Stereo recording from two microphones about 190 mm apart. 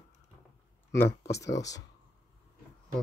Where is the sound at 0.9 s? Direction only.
15° left (ahead or behind).